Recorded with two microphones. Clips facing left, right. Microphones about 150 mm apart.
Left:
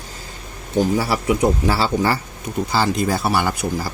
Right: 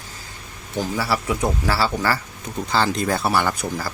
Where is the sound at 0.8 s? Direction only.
15° left (ahead or behind).